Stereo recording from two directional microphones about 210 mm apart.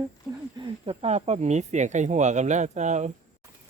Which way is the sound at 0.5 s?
25° right (ahead or behind).